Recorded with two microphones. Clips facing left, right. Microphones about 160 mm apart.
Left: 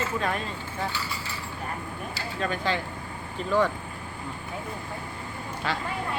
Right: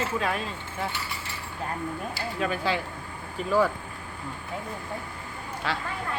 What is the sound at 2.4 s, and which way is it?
Speech, 5° right (ahead or behind).